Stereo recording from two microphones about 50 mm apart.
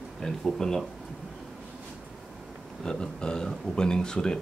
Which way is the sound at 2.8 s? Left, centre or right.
Centre.